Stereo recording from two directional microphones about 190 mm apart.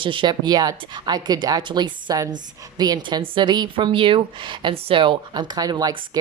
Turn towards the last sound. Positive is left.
turn(degrees=-20)  # may be behind; listen again after turning